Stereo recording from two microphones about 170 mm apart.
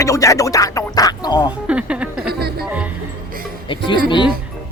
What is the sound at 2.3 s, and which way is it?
Music, 70° right (ahead or behind).